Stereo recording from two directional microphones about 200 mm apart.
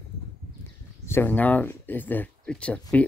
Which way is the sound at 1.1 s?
10° left (ahead or behind).